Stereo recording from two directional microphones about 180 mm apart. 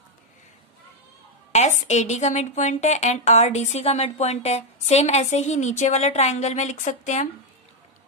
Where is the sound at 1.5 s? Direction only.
40° left (ahead or behind).